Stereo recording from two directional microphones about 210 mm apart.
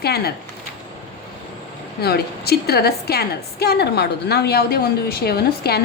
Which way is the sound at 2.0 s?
50° left (ahead or behind).